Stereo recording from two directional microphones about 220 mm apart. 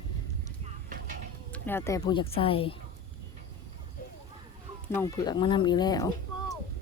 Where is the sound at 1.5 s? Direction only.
10° left (ahead or behind); by 2.7 s 25° left (ahead or behind).